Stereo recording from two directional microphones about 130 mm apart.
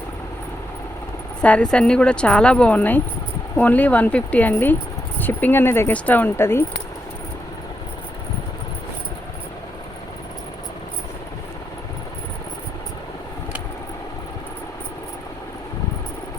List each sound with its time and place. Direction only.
1.4 s speech: 10° left (ahead or behind)